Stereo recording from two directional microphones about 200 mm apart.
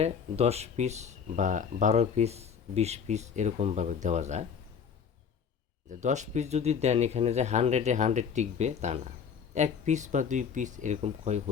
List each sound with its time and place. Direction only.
0.0 s speech: 30° right (ahead or behind)
5.9 s speech: 35° right (ahead or behind)